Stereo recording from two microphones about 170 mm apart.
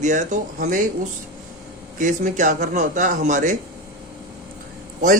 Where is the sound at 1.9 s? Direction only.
50° right (ahead or behind).